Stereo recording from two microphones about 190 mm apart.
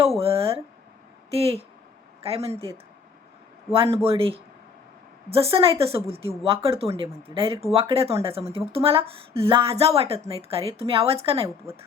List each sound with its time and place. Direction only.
0.2 s a woman's voice: 30° right (ahead or behind)
3.7 s a woman's voice: 30° right (ahead or behind)
11.4 s a woman's voice: 15° right (ahead or behind)